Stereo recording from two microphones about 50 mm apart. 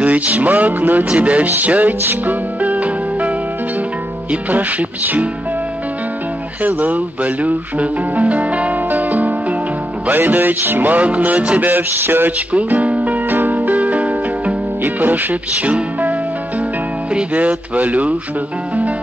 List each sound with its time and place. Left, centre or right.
0.0 s music: right
6.6 s speech: right
10.0 s music: right
12.5 s music: right
14.8 s speech: right
17.1 s music: right